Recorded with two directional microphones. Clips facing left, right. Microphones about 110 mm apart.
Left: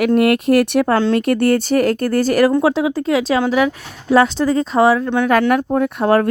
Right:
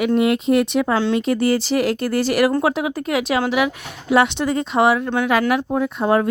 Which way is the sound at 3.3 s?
15° right (ahead or behind).